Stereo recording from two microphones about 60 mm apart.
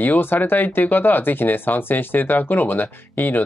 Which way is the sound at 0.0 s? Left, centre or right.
Left.